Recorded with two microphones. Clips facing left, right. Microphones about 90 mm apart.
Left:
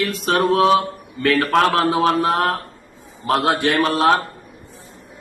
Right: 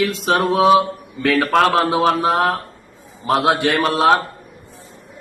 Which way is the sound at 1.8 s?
15° right (ahead or behind).